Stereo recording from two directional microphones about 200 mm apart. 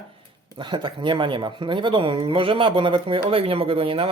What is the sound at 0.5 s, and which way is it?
Speech, 25° right (ahead or behind).